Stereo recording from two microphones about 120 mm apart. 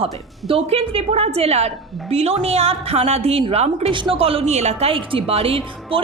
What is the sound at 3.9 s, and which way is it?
A woman's voice, 45° right (ahead or behind).